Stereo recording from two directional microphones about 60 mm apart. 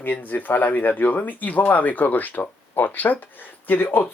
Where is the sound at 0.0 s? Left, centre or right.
Left.